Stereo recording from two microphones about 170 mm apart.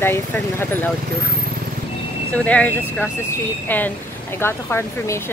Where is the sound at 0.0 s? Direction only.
15° left (ahead or behind).